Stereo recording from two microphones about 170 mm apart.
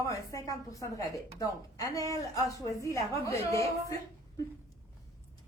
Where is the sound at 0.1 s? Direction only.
20° left (ahead or behind).